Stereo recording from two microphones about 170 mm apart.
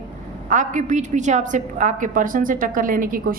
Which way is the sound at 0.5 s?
45° right (ahead or behind).